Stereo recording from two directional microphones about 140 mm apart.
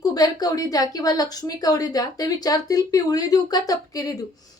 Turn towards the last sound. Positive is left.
turn(degrees=25)  # may be behind; listen again after turning